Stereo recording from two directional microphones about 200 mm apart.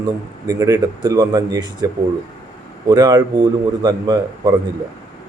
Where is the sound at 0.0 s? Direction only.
20° right (ahead or behind).